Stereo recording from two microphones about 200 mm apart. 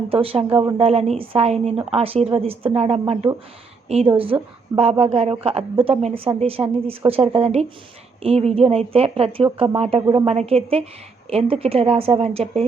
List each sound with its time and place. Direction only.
0.1 s a woman's voice: 30° right (ahead or behind)